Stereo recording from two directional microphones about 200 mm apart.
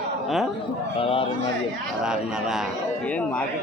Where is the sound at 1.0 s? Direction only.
25° left (ahead or behind).